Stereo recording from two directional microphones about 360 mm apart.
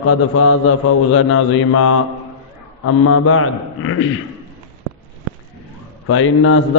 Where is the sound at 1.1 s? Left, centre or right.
Left.